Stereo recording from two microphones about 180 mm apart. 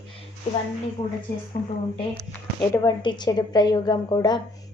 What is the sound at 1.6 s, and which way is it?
Speech, 55° left (ahead or behind).